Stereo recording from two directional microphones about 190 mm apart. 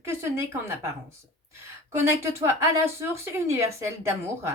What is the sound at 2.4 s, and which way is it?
Speech, 15° right (ahead or behind).